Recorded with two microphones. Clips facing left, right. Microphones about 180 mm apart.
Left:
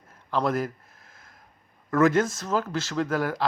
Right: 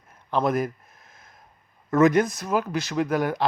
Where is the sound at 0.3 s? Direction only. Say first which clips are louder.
Right 2 dB; 20° right (ahead or behind).